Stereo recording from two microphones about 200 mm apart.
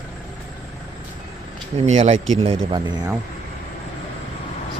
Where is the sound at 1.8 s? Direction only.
35° right (ahead or behind).